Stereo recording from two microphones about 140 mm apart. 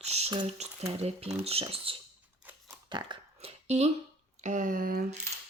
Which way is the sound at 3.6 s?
50° right (ahead or behind).